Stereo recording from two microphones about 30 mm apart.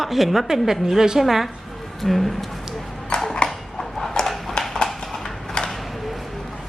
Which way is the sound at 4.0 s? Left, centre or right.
Centre.